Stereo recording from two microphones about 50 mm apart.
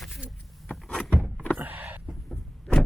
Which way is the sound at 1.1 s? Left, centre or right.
Right.